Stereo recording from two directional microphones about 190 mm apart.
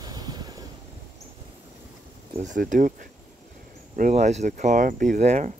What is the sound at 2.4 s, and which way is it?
Speech, 40° right (ahead or behind).